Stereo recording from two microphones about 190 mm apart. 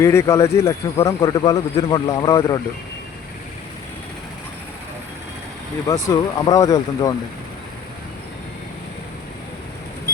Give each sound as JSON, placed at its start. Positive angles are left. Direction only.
{"t": 0.0, "sound": "speech", "side_deg": 15}
{"t": 5.9, "sound": "speech", "side_deg": 20}